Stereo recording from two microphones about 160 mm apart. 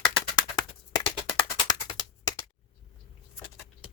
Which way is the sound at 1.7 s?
25° left (ahead or behind).